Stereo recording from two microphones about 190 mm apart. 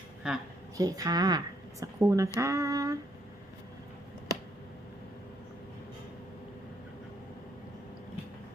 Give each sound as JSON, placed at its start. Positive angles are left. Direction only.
{"t": 0.2, "sound": "a woman's voice", "side_deg": -5}
{"t": 0.8, "sound": "speech", "side_deg": -20}